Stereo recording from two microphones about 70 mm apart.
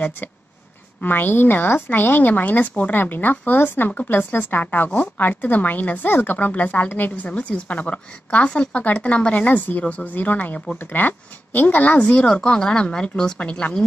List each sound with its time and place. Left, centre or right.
1.0 s a woman's voice: left; by 13.8 s centre